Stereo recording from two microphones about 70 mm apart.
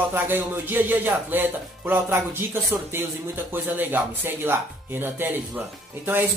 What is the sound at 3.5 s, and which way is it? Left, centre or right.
Speech, right.